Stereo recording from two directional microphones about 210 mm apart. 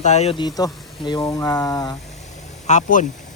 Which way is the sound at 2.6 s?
35° left (ahead or behind).